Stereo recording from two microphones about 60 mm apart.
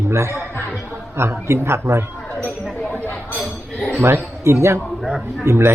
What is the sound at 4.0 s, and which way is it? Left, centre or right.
Speech, right.